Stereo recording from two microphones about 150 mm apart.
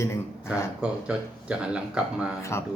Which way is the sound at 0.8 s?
5° right (ahead or behind).